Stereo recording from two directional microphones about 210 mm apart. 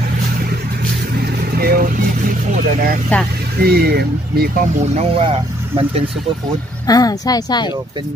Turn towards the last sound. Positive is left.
turn(degrees=20)  # may be behind; listen again after turning